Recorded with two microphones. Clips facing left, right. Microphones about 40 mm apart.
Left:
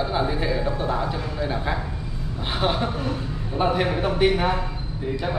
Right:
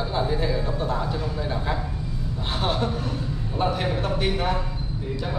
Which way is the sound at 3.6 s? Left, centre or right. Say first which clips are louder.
Left 3 dB; left.